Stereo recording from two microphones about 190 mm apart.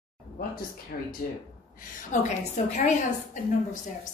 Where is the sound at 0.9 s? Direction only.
50° left (ahead or behind).